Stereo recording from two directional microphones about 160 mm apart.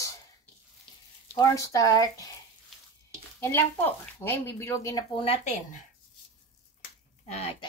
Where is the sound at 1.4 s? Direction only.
20° left (ahead or behind).